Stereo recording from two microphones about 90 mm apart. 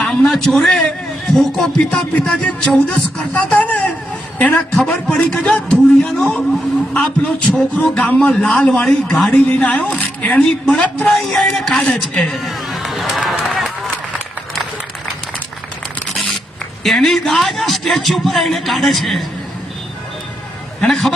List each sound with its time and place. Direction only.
0.0 s a sound: 10° left (ahead or behind)
0.3 s a man's voice: 5° left (ahead or behind)
1.9 s a man's voice: 15° left (ahead or behind)
11.3 s a man's voice: 5° left (ahead or behind)
11.9 s a woman's voice: 20° left (ahead or behind)
12.3 s run: centre (ahead or behind)
16.1 s zipper: centre (ahead or behind)
16.8 s a man's voice: 5° left (ahead or behind)
20.8 s a man's voice: 5° left (ahead or behind)